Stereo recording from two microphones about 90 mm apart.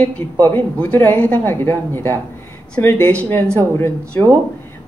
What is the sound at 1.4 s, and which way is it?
Speech, 25° left (ahead or behind).